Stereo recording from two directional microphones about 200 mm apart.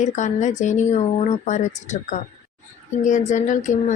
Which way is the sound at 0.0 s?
35° left (ahead or behind).